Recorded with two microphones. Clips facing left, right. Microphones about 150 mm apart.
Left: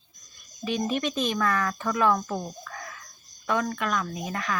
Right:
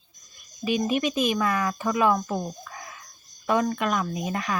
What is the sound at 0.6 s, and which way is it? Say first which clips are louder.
Speech: right 3 dB; 10° right (ahead or behind).